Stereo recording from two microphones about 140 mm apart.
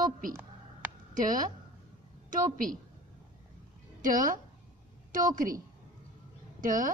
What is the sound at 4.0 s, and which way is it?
A woman's voice, 75° right (ahead or behind).